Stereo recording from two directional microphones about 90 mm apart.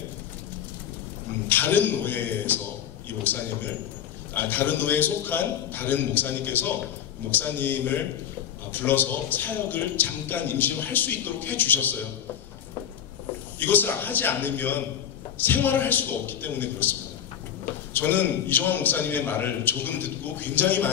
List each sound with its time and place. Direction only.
1.5 s a man's voice: 20° left (ahead or behind)
13.6 s a man's voice: 20° left (ahead or behind)
17.9 s a man's voice: 20° left (ahead or behind)